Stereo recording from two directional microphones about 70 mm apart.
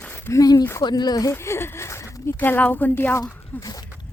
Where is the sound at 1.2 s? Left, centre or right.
Left.